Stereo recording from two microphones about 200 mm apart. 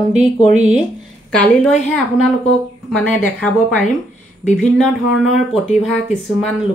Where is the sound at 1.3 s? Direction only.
5° left (ahead or behind).